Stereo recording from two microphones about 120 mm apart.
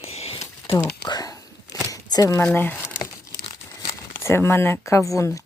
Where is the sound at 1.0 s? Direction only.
35° left (ahead or behind).